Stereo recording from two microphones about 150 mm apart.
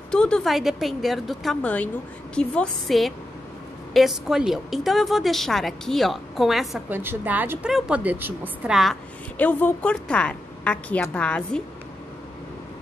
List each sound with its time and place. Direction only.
0.1 s a woman's voice: 5° left (ahead or behind)
6.9 s a woman's voice: 15° right (ahead or behind)
9.4 s a woman's voice: 10° left (ahead or behind)